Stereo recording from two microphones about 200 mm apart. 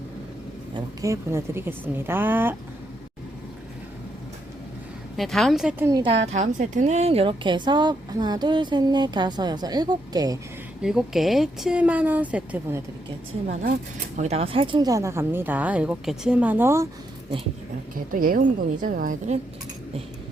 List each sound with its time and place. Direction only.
0.7 s speech: 20° right (ahead or behind)
5.1 s a woman's voice: centre (ahead or behind)
5.8 s speech: 15° right (ahead or behind)
6.1 s a woman's voice: 35° right (ahead or behind); by 10.3 s 20° right (ahead or behind)
10.8 s speech: centre (ahead or behind)
14.2 s speech: 30° right (ahead or behind); by 16.9 s 15° right (ahead or behind)
17.9 s a woman's voice: 45° right (ahead or behind)